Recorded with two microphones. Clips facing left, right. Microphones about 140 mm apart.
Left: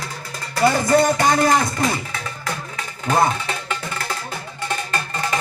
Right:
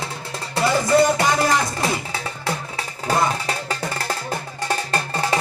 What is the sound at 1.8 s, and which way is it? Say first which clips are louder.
Music: left 1 dB; 30° right (ahead or behind).